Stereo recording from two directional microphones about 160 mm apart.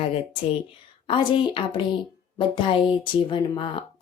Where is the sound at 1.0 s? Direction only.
35° left (ahead or behind).